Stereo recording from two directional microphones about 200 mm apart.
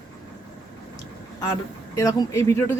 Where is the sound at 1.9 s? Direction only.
15° left (ahead or behind).